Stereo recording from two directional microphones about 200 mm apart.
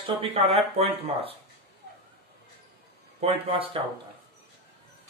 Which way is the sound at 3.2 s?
30° right (ahead or behind).